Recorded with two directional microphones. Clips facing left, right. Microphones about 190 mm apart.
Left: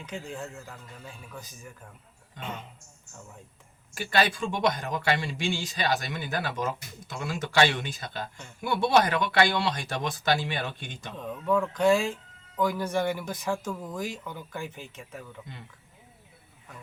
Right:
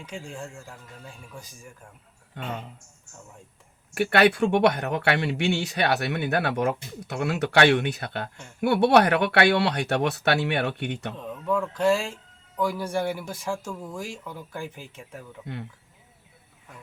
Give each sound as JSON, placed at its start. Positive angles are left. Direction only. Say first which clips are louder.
{"t": 0.0, "sound": "speech", "louder": "even", "side_deg": -10}
{"t": 3.9, "sound": "speech", "louder": "right 6 dB", "side_deg": -65}
{"t": 11.2, "sound": "speech", "louder": "left 2 dB", "side_deg": 0}